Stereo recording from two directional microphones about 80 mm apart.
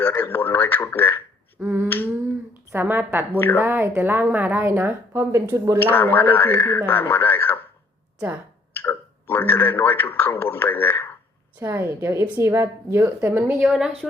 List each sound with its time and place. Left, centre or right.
0.0 s speech: left
1.5 s a woman's voice: right
3.3 s speech: left
3.6 s a woman's voice: right
5.8 s speech: left
8.8 s speech: left
11.6 s a woman's voice: right
13.6 s speech: centre